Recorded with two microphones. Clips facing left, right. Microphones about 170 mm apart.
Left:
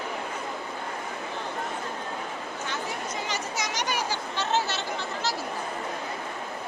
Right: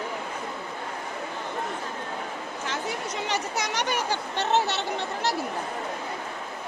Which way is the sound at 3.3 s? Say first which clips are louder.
Right 3 dB; 60° right (ahead or behind).